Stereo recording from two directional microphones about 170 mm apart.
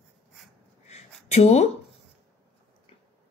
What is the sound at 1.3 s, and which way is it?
Speech, 40° left (ahead or behind).